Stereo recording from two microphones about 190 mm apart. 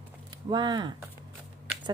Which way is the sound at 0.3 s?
20° right (ahead or behind).